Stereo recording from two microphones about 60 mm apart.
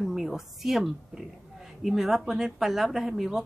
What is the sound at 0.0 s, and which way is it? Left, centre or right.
Speech, centre.